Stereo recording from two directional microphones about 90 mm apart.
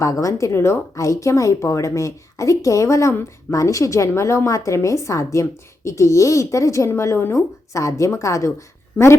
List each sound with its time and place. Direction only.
0.0 s speech: 40° left (ahead or behind)